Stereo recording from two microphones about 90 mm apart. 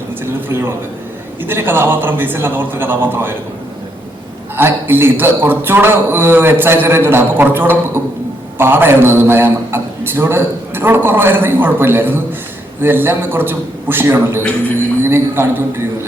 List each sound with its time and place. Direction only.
0.4 s a man's voice: 25° right (ahead or behind)
4.5 s a man's voice: 25° right (ahead or behind)